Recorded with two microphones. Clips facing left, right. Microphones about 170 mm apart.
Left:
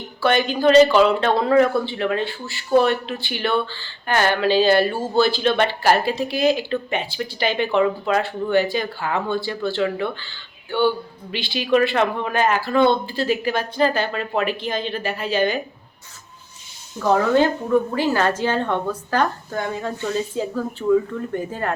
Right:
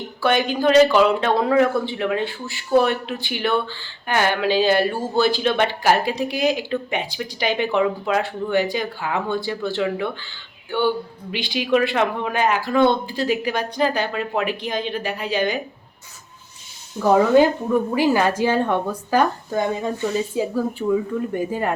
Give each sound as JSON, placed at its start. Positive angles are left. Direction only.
{"t": 0.2, "sound": "speech", "side_deg": -15}
{"t": 17.0, "sound": "speech", "side_deg": -10}